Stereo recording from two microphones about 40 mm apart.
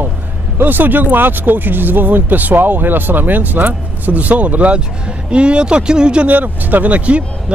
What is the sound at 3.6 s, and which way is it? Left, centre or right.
Speech, right.